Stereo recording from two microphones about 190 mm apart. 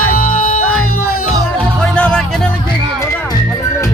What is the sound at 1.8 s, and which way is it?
Music, 5° left (ahead or behind).